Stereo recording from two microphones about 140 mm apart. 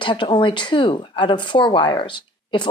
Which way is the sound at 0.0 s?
35° left (ahead or behind).